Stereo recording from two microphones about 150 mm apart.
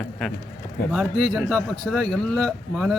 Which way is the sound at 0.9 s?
Centre (ahead or behind).